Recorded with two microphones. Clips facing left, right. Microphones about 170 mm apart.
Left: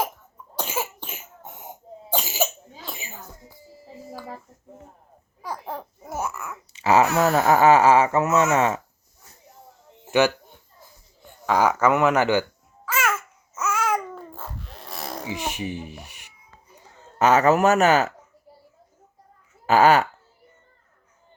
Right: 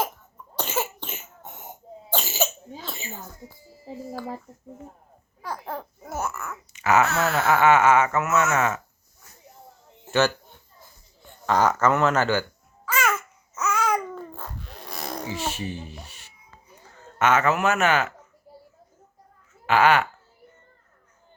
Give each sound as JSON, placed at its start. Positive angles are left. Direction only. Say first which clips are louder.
{"t": 0.5, "sound": "cough", "louder": "right 1 dB", "side_deg": 10}
{"t": 5.4, "sound": "babbling", "louder": "even", "side_deg": 10}
{"t": 6.7, "sound": "a sound", "louder": "left 2 dB", "side_deg": 30}
{"t": 7.0, "sound": "speech", "louder": "left 4 dB", "side_deg": 15}
{"t": 7.3, "sound": "speech", "louder": "left 3 dB", "side_deg": 40}
{"t": 10.1, "sound": "speech", "louder": "left 2 dB", "side_deg": 15}
{"t": 11.4, "sound": "speech", "louder": "left 1 dB", "side_deg": 10}
{"t": 12.8, "sound": "babbling", "louder": "even", "side_deg": 5}
{"t": 15.3, "sound": "speech", "louder": "left 3 dB", "side_deg": 15}
{"t": 17.2, "sound": "speech", "louder": "left 4 dB", "side_deg": 35}
{"t": 19.6, "sound": "speech", "louder": "left 3 dB", "side_deg": 40}